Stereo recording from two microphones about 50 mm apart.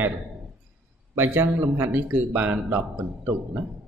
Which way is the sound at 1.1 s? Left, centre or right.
Right.